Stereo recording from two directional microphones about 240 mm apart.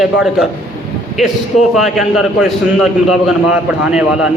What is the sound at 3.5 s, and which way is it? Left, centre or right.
Speech, centre.